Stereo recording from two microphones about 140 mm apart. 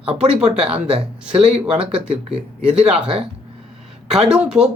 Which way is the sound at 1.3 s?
45° right (ahead or behind).